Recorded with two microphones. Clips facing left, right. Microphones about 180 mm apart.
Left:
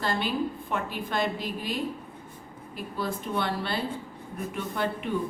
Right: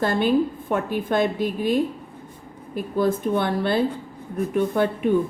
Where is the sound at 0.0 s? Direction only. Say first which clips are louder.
Right 8 dB; 50° right (ahead or behind).